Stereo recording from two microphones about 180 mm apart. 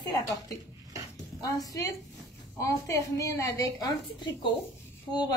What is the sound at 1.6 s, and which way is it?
A woman's voice, 20° left (ahead or behind).